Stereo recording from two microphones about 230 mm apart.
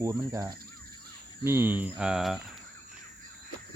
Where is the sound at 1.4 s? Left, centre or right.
Centre.